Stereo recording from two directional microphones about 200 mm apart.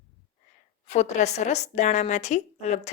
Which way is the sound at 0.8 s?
35° left (ahead or behind).